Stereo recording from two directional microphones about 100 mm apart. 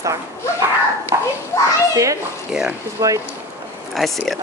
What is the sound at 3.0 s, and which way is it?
Speech, 35° right (ahead or behind).